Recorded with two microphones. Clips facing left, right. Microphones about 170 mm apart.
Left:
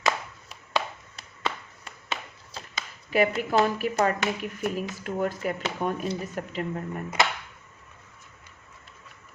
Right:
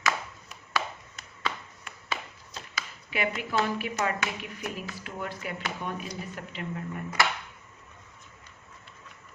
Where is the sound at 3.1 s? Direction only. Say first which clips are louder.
Left 8 dB; 40° left (ahead or behind).